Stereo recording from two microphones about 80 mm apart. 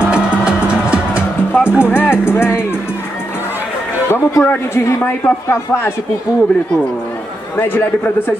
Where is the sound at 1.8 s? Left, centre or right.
Left.